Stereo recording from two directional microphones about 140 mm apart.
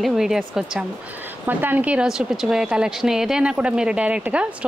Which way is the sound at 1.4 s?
15° right (ahead or behind).